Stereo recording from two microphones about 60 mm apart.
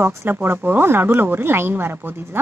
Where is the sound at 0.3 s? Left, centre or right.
Right.